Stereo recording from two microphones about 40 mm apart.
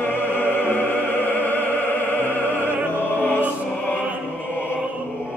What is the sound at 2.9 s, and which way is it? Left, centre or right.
Music, left.